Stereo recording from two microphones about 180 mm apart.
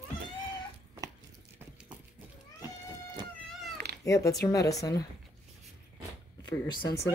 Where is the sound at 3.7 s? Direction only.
65° right (ahead or behind).